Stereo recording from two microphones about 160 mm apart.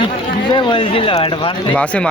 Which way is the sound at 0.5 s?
35° left (ahead or behind).